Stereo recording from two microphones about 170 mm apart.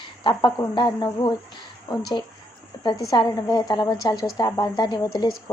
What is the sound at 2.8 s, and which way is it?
Speech, 25° left (ahead or behind).